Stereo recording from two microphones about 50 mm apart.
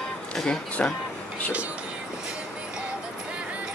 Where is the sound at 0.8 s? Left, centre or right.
Left.